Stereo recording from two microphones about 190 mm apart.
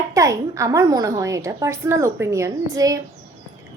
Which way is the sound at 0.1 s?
15° right (ahead or behind).